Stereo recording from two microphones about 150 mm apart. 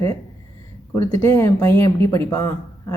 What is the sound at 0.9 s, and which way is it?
A woman's voice, 15° left (ahead or behind).